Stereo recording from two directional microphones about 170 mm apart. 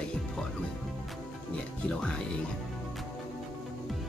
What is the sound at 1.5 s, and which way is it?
Speech, 5° left (ahead or behind).